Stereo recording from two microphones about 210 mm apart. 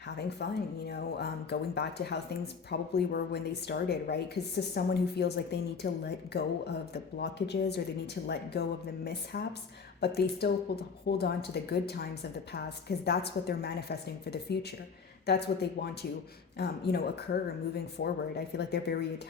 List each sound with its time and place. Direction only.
0.4 s a woman's voice: 50° left (ahead or behind)
13.1 s a woman's voice: 50° left (ahead or behind)